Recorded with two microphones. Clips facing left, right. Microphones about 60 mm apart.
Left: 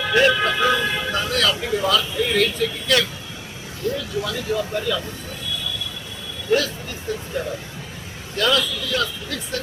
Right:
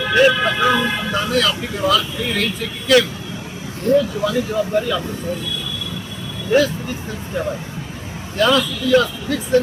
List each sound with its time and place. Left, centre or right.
0.1 s speech: centre
3.9 s speech: right
4.2 s speech: centre
6.5 s speech: centre